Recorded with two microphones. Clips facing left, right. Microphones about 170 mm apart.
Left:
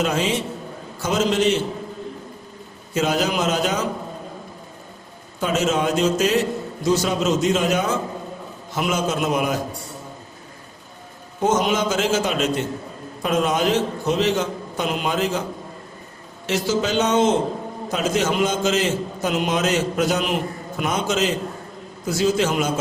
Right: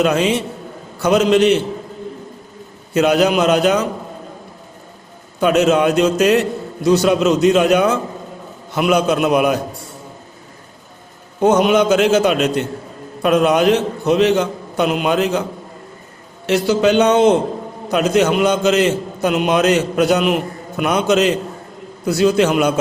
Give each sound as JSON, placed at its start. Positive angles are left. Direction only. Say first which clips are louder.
{"t": 0.0, "sound": "a man's voice", "louder": "right 6 dB", "side_deg": -65}
{"t": 2.9, "sound": "a man's voice", "louder": "right 7 dB", "side_deg": -65}
{"t": 5.4, "sound": "a man's voice", "louder": "right 7 dB", "side_deg": -65}
{"t": 11.3, "sound": "a man's voice", "louder": "right 7 dB", "side_deg": -65}
{"t": 16.5, "sound": "a man's voice", "louder": "right 7 dB", "side_deg": -65}